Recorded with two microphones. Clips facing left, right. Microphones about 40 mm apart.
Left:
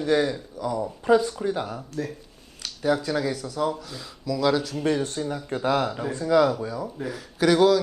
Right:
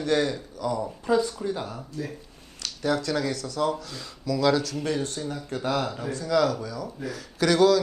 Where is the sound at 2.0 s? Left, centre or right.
Left.